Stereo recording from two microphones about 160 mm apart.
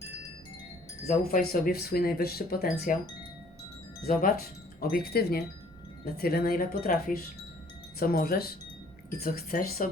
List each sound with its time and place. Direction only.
1.0 s speech: 60° left (ahead or behind)
4.0 s speech: 60° left (ahead or behind)
4.8 s speech: 70° left (ahead or behind)